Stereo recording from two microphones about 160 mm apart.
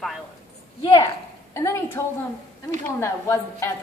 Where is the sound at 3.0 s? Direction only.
15° left (ahead or behind).